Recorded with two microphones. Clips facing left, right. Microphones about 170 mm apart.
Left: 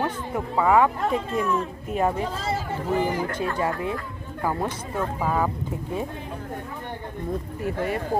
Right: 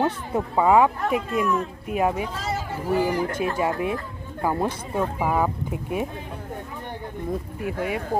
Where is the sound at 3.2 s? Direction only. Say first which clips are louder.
Right 2 dB; 20° right (ahead or behind).